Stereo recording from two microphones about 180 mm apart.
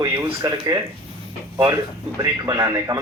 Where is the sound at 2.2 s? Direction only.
20° right (ahead or behind).